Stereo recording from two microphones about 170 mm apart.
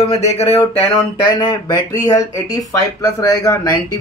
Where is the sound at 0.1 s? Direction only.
40° left (ahead or behind).